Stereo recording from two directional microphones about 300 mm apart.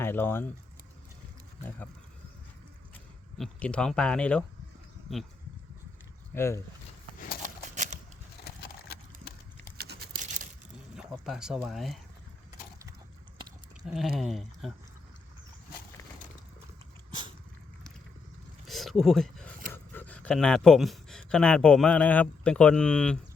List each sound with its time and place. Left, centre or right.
0.0 s speech: centre
3.3 s speech: centre
6.3 s speech: centre
7.8 s a sound: right
8.4 s clip-clop: left
9.7 s a sound: right
10.9 s speech: centre
13.8 s speech: centre
18.7 s a sound: centre
19.7 s speech: centre